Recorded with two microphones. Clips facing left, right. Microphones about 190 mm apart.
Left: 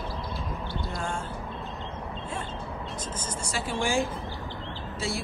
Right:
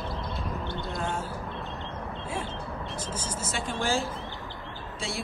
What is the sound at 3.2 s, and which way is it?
Vehicle, centre (ahead or behind).